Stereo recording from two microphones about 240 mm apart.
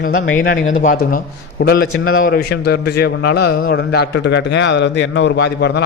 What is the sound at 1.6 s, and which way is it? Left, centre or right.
A man's voice, left.